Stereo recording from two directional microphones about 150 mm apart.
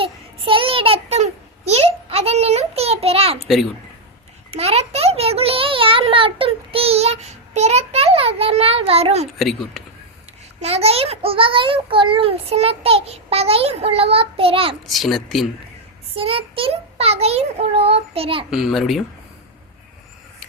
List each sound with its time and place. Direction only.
0.0 s child singing: 35° right (ahead or behind)
4.5 s a sound: 45° right (ahead or behind)
9.4 s a child's voice: centre (ahead or behind)
10.6 s a child's voice: 45° right (ahead or behind)
14.8 s a child's voice: centre (ahead or behind)
16.1 s a child's voice: 40° right (ahead or behind)
18.5 s a child's voice: centre (ahead or behind)